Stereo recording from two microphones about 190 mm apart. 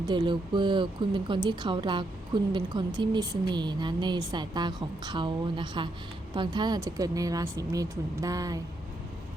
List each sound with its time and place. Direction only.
0.0 s speech: 25° right (ahead or behind)